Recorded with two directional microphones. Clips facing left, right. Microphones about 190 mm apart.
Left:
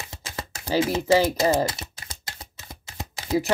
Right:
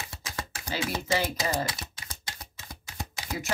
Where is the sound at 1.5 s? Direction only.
25° left (ahead or behind).